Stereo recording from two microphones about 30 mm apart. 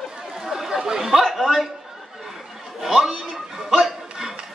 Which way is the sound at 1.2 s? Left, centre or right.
Centre.